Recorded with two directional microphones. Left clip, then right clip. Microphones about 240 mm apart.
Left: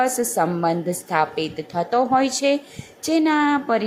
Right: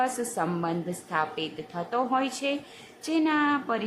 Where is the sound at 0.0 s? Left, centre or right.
Centre.